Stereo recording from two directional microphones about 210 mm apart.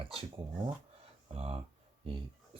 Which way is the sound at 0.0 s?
25° right (ahead or behind).